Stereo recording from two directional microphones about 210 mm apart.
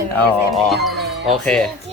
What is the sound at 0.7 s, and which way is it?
Speech, centre (ahead or behind).